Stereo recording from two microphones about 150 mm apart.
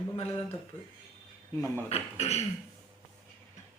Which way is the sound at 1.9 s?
45° left (ahead or behind).